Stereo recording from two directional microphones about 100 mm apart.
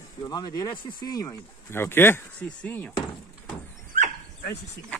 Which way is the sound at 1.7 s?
25° left (ahead or behind).